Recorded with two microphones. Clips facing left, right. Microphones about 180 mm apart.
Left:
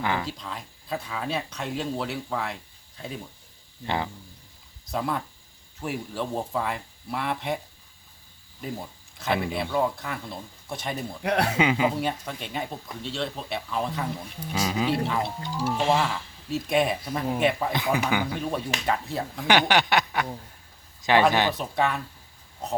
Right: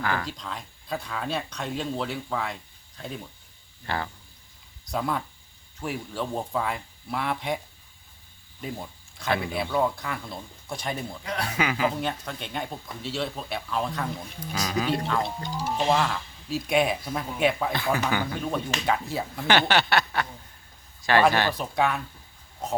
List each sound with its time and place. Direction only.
0.0 s speech: 20° left (ahead or behind)
0.3 s speech: 5° left (ahead or behind)
3.8 s a sound: 20° left (ahead or behind)
4.9 s speech: centre (ahead or behind)
8.6 s speech: 5° left (ahead or behind)
11.2 s speech: 65° left (ahead or behind)
11.5 s speech: 20° left (ahead or behind)
11.9 s speech: 5° left (ahead or behind)
15.2 s speech: 15° right (ahead or behind)
16.0 s speech: centre (ahead or behind)
17.7 s a sound: 15° left (ahead or behind)
18.3 s speech: 5° left (ahead or behind)
19.5 s a sound: 15° left (ahead or behind)
21.6 s speech: centre (ahead or behind)